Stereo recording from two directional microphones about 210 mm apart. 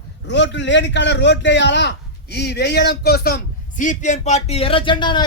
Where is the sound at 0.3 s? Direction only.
55° left (ahead or behind).